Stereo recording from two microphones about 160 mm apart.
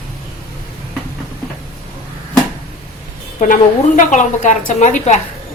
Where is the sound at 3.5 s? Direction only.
50° left (ahead or behind).